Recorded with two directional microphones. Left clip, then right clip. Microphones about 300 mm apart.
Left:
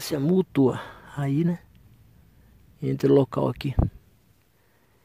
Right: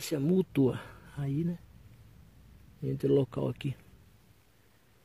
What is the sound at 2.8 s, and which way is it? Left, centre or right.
Speech, centre.